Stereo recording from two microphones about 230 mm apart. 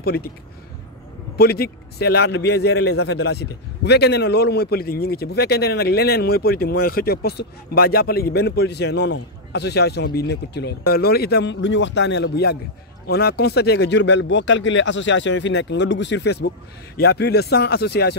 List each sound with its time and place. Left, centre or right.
0.0 s speech: left
1.4 s a man's voice: left